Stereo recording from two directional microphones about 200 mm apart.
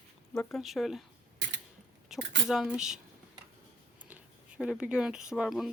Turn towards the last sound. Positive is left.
turn(degrees=0)  # may be behind; listen again after turning